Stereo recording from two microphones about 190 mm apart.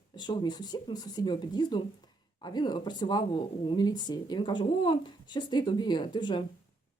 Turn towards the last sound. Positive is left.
turn(degrees=25)  # may be behind; listen again after turning